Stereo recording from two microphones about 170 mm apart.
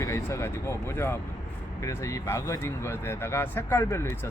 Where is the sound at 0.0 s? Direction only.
15° left (ahead or behind).